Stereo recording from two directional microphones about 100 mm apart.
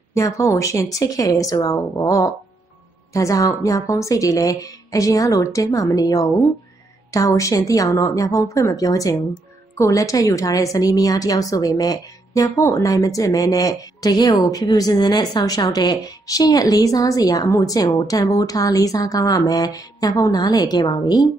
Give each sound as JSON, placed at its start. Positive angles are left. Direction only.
{"t": 0.1, "sound": "a woman's voice", "side_deg": 30}